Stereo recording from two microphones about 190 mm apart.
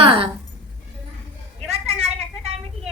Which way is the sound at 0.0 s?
30° right (ahead or behind).